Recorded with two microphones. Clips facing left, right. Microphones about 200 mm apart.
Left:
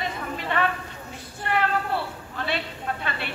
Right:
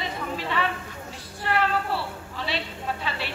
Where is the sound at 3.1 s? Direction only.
55° left (ahead or behind).